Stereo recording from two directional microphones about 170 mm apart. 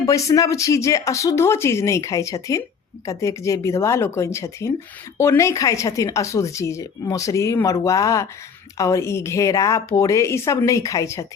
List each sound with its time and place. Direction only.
0.0 s speech: 20° left (ahead or behind)